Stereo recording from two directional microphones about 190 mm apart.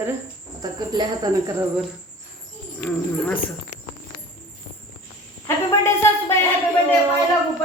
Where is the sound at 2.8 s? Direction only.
5° left (ahead or behind).